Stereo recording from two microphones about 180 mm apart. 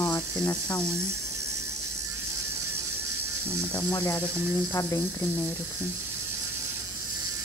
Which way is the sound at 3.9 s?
20° left (ahead or behind).